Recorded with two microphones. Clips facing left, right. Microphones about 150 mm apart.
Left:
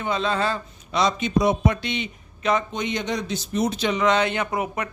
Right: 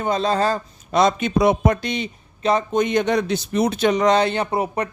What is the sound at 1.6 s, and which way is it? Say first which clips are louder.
Speech: right 3 dB; 40° right (ahead or behind).